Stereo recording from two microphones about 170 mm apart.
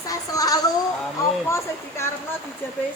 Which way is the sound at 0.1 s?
20° left (ahead or behind).